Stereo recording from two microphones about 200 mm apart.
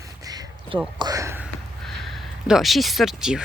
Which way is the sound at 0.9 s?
20° right (ahead or behind).